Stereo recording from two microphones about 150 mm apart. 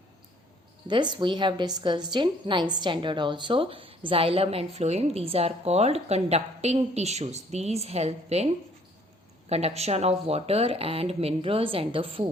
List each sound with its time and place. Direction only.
0.9 s a woman's voice: 30° right (ahead or behind)
9.5 s a woman's voice: 45° right (ahead or behind)